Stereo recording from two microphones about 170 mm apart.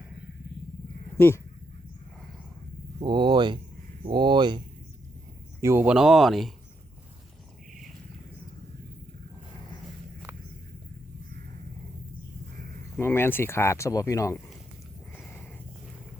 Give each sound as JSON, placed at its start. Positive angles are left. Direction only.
{"t": 3.0, "sound": "speech", "side_deg": -25}
{"t": 5.5, "sound": "speech", "side_deg": -15}
{"t": 13.0, "sound": "speech", "side_deg": 15}
{"t": 15.1, "sound": "sniff", "side_deg": 10}